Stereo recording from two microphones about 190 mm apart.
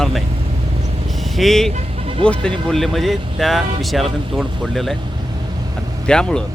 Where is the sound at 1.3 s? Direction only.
Centre (ahead or behind).